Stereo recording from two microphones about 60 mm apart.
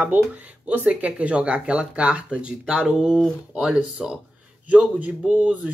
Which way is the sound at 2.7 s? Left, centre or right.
Centre.